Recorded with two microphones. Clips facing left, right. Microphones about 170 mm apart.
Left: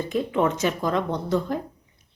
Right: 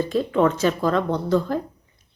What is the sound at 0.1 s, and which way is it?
A woman's voice, 15° left (ahead or behind).